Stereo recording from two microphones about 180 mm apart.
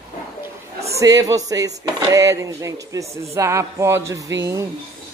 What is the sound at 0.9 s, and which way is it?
Speech, 20° right (ahead or behind).